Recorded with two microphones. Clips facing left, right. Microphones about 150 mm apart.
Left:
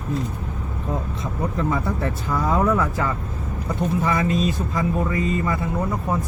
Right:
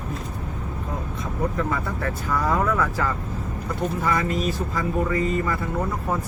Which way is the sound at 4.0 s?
20° left (ahead or behind).